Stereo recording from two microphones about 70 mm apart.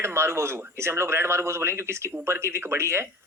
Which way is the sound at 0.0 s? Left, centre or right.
Right.